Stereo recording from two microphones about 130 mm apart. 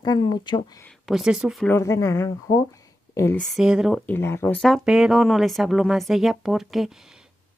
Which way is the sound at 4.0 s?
15° left (ahead or behind).